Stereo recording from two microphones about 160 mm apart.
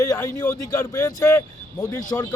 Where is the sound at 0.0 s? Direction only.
20° left (ahead or behind).